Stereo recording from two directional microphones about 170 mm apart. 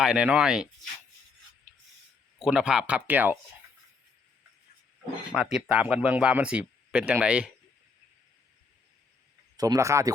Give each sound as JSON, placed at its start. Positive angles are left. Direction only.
{"t": 0.0, "sound": "speech", "side_deg": -5}
{"t": 2.4, "sound": "speech", "side_deg": -5}
{"t": 5.3, "sound": "speech", "side_deg": -5}
{"t": 9.6, "sound": "speech", "side_deg": -20}